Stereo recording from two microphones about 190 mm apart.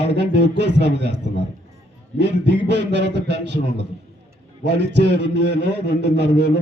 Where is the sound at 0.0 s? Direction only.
65° right (ahead or behind).